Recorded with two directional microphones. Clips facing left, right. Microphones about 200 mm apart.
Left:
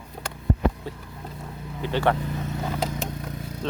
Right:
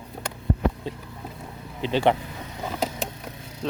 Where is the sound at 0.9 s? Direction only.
15° right (ahead or behind).